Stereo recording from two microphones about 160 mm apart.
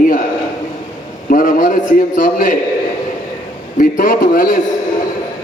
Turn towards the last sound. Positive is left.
turn(degrees=55)  # may be behind; listen again after turning